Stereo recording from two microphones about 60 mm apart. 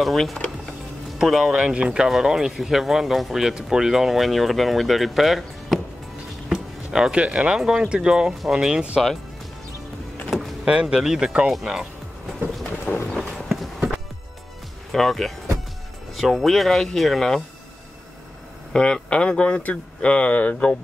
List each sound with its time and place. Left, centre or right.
0.0 s speech: centre
10.3 s power windows: centre
10.7 s speech: centre
13.1 s clip-clop: centre
14.9 s speech: centre
18.7 s speech: centre